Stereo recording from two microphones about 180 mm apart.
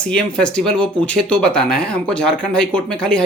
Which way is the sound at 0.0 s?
5° left (ahead or behind).